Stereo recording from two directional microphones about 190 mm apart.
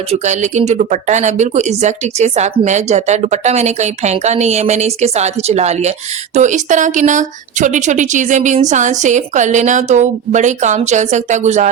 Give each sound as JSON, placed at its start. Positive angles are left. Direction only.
{"t": 0.1, "sound": "speech", "side_deg": -40}